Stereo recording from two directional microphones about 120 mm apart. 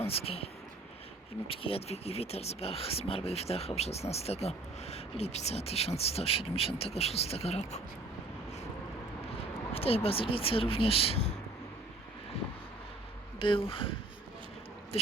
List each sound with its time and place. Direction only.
0.0 s speech: 55° left (ahead or behind)
9.7 s speech: 55° left (ahead or behind)
13.4 s speech: 50° left (ahead or behind)